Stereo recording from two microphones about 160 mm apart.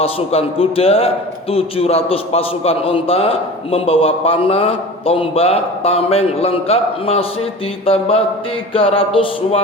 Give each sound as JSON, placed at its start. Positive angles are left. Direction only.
{"t": 0.0, "sound": "a man's voice", "side_deg": 35}